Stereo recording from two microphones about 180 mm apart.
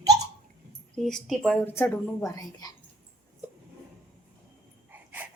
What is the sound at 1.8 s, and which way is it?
Speech, 15° left (ahead or behind).